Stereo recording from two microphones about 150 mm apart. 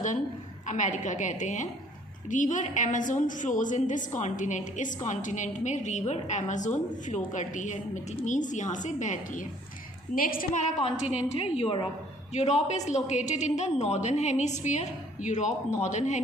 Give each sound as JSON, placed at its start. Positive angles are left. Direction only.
{"t": 0.7, "sound": "a woman's voice", "side_deg": 55}
{"t": 10.2, "sound": "a woman's voice", "side_deg": 70}
{"t": 10.6, "sound": "a woman's voice", "side_deg": 50}
{"t": 12.3, "sound": "a woman's voice", "side_deg": 50}